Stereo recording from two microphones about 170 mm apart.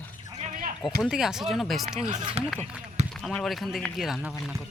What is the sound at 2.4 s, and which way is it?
Speech, 40° right (ahead or behind).